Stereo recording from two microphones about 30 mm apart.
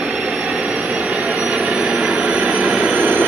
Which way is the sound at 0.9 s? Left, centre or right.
Right.